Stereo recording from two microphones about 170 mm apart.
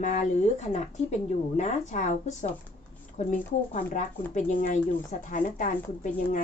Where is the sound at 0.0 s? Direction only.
50° left (ahead or behind).